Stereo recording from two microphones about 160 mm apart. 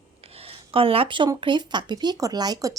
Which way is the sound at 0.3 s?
35° right (ahead or behind).